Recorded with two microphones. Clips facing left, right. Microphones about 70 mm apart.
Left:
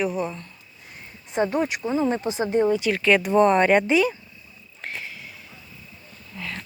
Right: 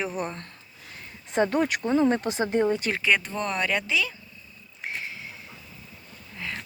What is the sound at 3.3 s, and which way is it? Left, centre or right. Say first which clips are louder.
Speech: left 11 dB; left.